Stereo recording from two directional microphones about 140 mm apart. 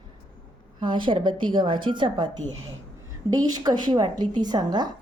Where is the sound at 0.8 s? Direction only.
35° right (ahead or behind).